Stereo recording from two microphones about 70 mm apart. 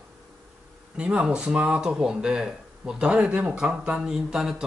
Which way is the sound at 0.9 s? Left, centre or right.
Centre.